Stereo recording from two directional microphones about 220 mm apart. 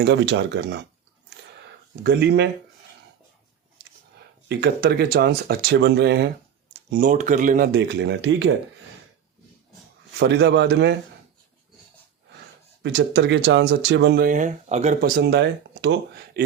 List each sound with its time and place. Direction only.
0.0 s speech: 50° right (ahead or behind)
2.0 s speech: 50° right (ahead or behind)
4.4 s speech: 45° right (ahead or behind)
6.9 s speech: 35° right (ahead or behind); by 8.5 s 55° right (ahead or behind)
10.2 s speech: 50° right (ahead or behind)
12.8 s speech: 50° right (ahead or behind)